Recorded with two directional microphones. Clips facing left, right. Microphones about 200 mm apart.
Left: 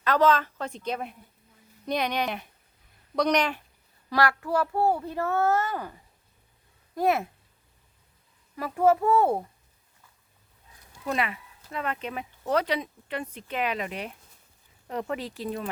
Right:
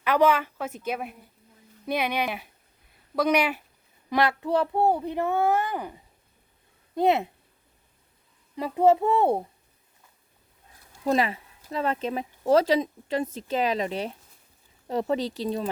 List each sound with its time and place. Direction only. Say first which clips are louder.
0.0 s speech: right 1 dB; 10° right (ahead or behind)
4.1 s a child's voice: right 2 dB; 20° right (ahead or behind)
8.5 s a child's voice: right 2 dB; 20° right (ahead or behind)
11.0 s a child's voice: right 5 dB; 30° right (ahead or behind)